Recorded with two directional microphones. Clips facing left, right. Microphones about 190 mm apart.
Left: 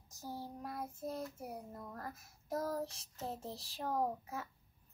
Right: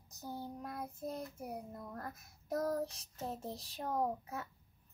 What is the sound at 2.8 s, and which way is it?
Child singing, 15° right (ahead or behind).